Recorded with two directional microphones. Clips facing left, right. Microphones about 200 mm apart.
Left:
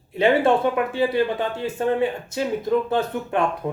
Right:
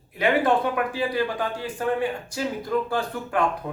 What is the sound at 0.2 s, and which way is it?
Speech, 25° left (ahead or behind).